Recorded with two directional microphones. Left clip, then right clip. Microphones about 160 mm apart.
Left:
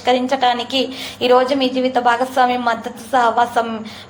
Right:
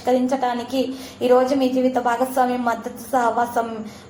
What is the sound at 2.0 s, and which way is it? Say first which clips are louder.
Speech: left 10 dB; 20° left (ahead or behind).